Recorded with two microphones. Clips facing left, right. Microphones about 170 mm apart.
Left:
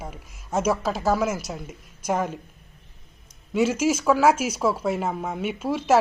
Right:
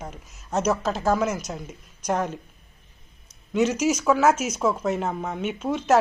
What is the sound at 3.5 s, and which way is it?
Speech, 5° left (ahead or behind).